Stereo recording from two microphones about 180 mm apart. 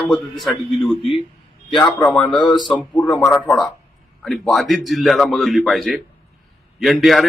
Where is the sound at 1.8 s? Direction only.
25° left (ahead or behind).